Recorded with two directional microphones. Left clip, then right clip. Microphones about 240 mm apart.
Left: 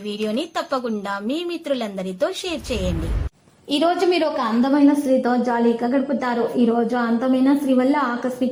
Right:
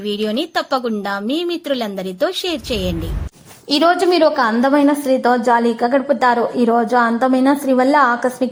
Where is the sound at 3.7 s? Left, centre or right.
Centre.